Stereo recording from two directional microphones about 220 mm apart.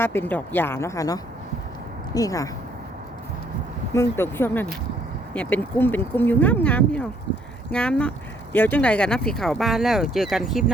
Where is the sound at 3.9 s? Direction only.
10° left (ahead or behind).